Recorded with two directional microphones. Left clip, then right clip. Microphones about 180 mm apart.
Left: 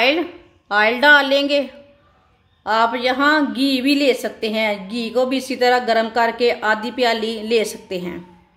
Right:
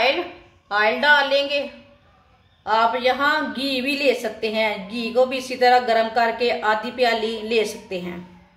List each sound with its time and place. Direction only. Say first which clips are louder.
0.7 s a woman's voice: left 4 dB; 60° left (ahead or behind)
2.6 s a woman's voice: left 1 dB; 60° left (ahead or behind)